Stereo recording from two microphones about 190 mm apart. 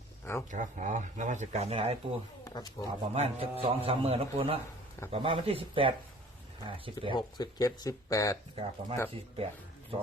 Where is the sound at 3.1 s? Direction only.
30° right (ahead or behind).